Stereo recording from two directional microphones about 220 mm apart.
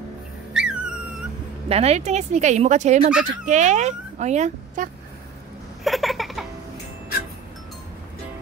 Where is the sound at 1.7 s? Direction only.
30° right (ahead or behind).